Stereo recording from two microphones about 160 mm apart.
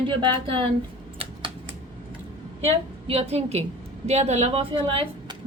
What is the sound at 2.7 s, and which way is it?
A woman's voice, 40° right (ahead or behind).